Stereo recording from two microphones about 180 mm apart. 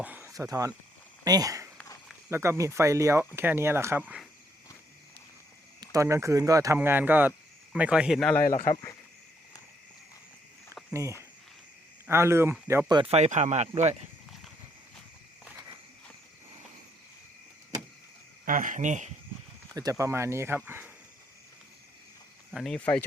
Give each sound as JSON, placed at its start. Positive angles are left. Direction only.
{"t": 0.0, "sound": "speech", "side_deg": -10}
{"t": 5.8, "sound": "speech", "side_deg": -15}
{"t": 8.7, "sound": "speech", "side_deg": 20}
{"t": 12.0, "sound": "speech", "side_deg": -15}
{"t": 13.0, "sound": "speech", "side_deg": -35}
{"t": 18.4, "sound": "speech", "side_deg": -50}
{"t": 19.7, "sound": "speech", "side_deg": -20}
{"t": 22.5, "sound": "speech", "side_deg": 5}